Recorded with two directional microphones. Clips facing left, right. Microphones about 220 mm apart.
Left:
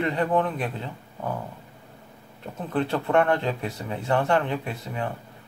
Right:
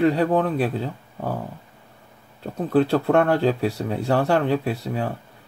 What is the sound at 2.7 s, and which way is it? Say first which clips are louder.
Speech: right 5 dB; 30° right (ahead or behind).